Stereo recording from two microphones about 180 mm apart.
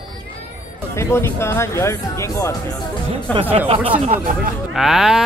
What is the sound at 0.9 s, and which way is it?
Speech, 15° left (ahead or behind).